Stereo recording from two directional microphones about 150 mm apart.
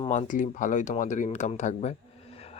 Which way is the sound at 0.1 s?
55° left (ahead or behind).